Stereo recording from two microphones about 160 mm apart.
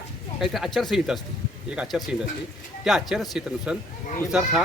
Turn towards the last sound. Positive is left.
turn(degrees=-5)  # may be behind; listen again after turning